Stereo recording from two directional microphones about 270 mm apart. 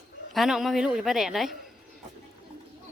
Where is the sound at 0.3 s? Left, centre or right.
Centre.